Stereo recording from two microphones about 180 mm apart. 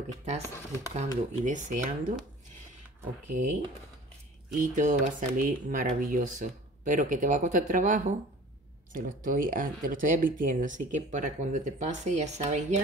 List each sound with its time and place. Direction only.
0.4 s speech: 15° left (ahead or behind)
0.9 s speech: 40° right (ahead or behind)
3.3 s speech: 45° right (ahead or behind)